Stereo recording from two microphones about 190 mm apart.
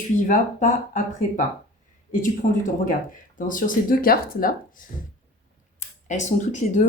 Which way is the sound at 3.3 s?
45° left (ahead or behind).